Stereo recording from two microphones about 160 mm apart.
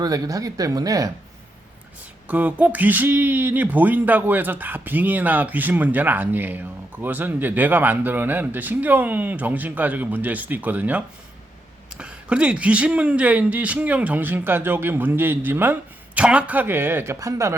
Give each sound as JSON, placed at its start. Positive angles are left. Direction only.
{"t": 0.0, "sound": "speech", "side_deg": -25}
{"t": 2.2, "sound": "speech", "side_deg": -10}